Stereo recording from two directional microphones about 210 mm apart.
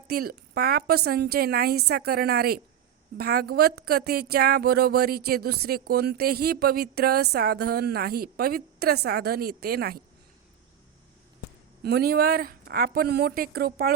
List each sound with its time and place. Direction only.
0.1 s a woman's voice: 45° right (ahead or behind)
11.8 s a woman's voice: 50° right (ahead or behind)